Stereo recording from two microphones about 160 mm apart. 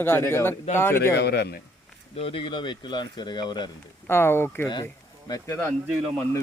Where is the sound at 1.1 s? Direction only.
90° left.